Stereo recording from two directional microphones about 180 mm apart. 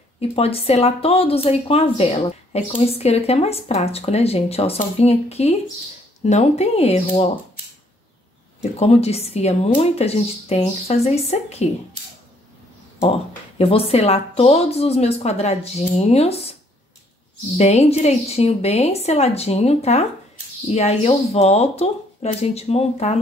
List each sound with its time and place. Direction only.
0.2 s speech: 35° left (ahead or behind)
8.7 s speech: 35° left (ahead or behind)
13.6 s speech: 30° left (ahead or behind)
17.6 s speech: 35° left (ahead or behind)